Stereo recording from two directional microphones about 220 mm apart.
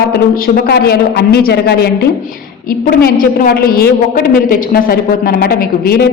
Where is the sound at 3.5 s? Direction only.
45° left (ahead or behind).